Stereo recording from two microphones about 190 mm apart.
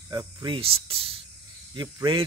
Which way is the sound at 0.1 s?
20° right (ahead or behind).